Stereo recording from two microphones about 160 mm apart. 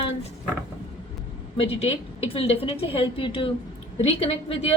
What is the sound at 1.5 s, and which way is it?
A woman's voice, 35° left (ahead or behind).